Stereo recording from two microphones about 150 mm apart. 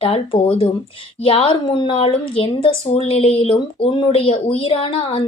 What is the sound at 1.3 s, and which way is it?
Speech, 40° left (ahead or behind).